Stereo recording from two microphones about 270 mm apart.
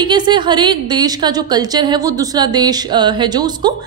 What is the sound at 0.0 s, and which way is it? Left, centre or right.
A woman's voice, centre.